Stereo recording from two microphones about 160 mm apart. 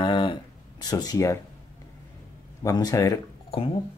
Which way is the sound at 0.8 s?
25° left (ahead or behind).